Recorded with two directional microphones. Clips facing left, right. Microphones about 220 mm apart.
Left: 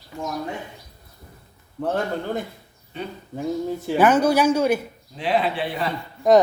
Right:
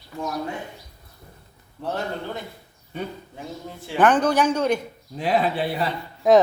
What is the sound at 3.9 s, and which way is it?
Speech, 10° left (ahead or behind).